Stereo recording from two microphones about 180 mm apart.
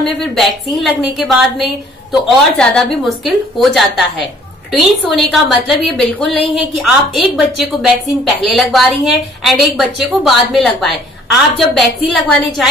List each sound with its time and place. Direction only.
0.2 s a woman's voice: centre (ahead or behind)